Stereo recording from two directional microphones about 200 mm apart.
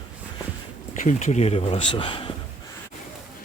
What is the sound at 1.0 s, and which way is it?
Speech, 35° left (ahead or behind).